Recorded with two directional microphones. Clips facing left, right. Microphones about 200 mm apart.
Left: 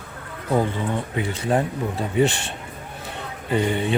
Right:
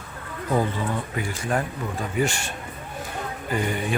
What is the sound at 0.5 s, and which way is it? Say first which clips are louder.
Speech: left 2 dB; 20° left (ahead or behind).